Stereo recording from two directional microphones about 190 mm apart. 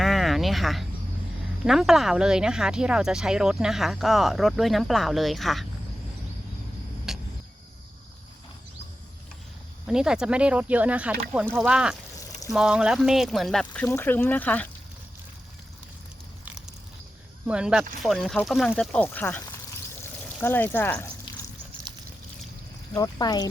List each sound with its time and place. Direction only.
0.0 s a sound: centre (ahead or behind)
1.6 s speech: centre (ahead or behind)
7.1 s a sound: centre (ahead or behind)
9.8 s speech: 5° right (ahead or behind)
17.4 s speech: 5° right (ahead or behind); by 21.1 s 10° left (ahead or behind)
23.0 s speech: 20° left (ahead or behind)